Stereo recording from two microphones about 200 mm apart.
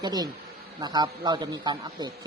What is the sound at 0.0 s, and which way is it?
A man's voice, 20° right (ahead or behind).